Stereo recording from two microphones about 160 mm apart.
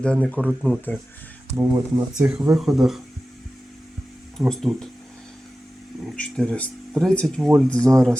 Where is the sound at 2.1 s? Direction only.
5° right (ahead or behind).